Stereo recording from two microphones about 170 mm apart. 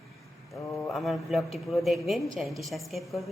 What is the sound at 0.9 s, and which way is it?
A woman's voice, centre (ahead or behind).